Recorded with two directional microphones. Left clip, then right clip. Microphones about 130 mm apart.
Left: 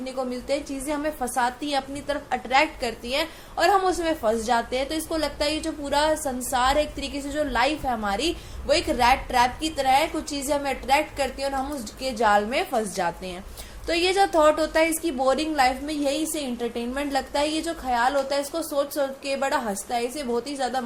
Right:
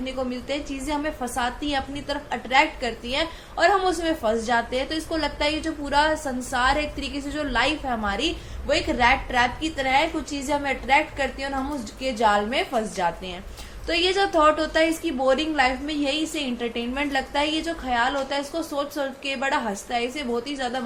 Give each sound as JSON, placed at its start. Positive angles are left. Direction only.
{"t": 0.0, "sound": "a woman's voice", "side_deg": 50}